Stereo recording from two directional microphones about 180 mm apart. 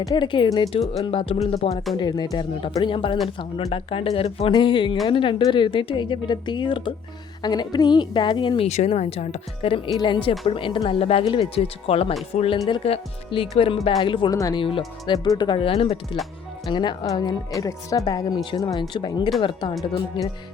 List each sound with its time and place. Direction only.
0.0 s a woman's voice: 20° left (ahead or behind)
2.0 s a woman's voice: 20° left (ahead or behind)